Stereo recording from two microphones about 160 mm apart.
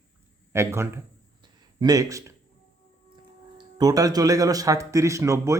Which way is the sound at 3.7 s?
25° right (ahead or behind).